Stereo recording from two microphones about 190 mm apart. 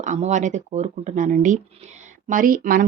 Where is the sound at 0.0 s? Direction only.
40° right (ahead or behind).